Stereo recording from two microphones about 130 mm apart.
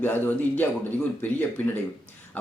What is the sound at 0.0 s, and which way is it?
A man's voice, 15° left (ahead or behind).